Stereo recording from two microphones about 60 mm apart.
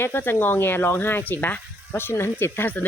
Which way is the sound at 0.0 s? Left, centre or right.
Left.